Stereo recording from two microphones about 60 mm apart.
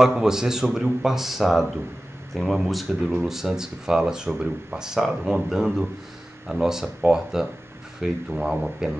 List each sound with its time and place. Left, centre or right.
0.0 s speech: centre